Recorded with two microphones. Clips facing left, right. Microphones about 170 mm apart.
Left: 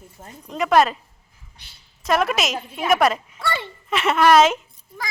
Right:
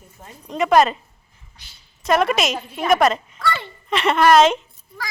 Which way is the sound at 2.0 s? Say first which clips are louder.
Right 2 dB; centre (ahead or behind).